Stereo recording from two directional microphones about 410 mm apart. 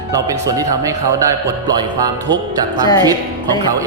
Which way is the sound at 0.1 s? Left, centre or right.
Centre.